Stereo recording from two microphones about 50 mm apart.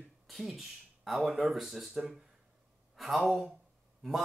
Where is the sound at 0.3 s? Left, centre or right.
Centre.